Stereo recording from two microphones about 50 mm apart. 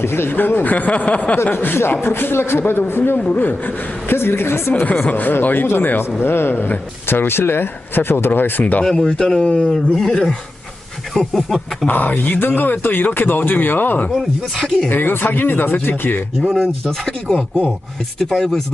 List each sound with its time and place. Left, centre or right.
0.0 s speech: left
1.5 s speech: left
3.3 s speech: left
5.0 s speech: left
8.8 s speech: centre
11.3 s speech: centre
11.9 s speech: left
14.1 s speech: centre
14.8 s speech: left
16.4 s speech: centre
17.1 s speech: centre